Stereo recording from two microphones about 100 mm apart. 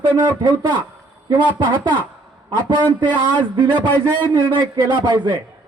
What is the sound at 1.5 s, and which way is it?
Speech, 50° right (ahead or behind).